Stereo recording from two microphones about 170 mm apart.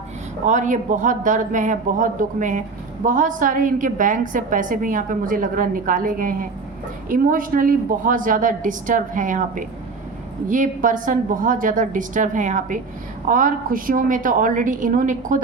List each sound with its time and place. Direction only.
0.4 s a man's voice: 50° right (ahead or behind)